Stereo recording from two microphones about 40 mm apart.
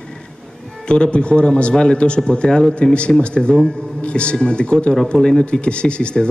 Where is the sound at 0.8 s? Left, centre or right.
Left.